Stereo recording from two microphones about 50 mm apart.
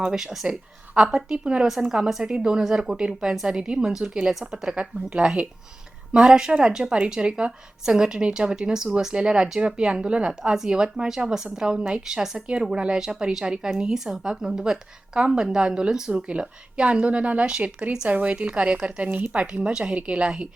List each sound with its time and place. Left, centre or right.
0.1 s a woman's voice: centre
18.1 s speech: right
19.0 s speech: right
19.3 s speech: right